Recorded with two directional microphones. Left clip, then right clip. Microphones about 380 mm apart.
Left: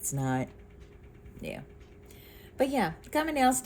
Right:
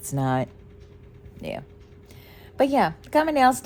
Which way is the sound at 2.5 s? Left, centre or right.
Centre.